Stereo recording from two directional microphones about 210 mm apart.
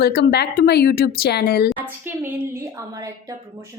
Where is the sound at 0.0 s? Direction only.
50° left (ahead or behind).